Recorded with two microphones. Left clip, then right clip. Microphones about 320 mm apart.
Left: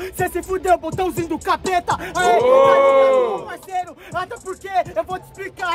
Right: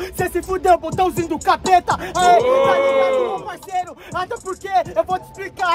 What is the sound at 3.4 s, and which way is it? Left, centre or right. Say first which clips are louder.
Speech: right 2 dB; centre.